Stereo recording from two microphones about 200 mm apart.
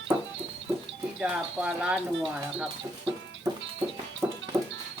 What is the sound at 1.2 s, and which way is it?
Speech, 5° right (ahead or behind).